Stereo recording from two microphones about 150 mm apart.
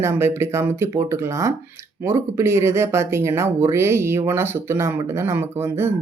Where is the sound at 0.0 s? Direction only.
15° right (ahead or behind).